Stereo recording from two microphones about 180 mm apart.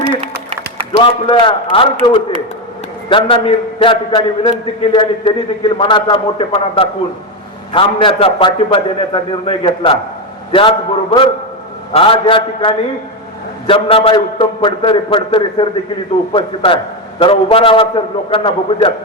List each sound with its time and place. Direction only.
1.0 s a man's voice: 30° left (ahead or behind)